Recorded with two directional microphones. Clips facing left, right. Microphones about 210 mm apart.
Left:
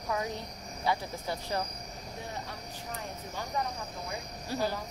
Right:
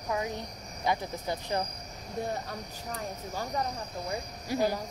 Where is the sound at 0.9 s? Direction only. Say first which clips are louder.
Right 2 dB; 20° right (ahead or behind).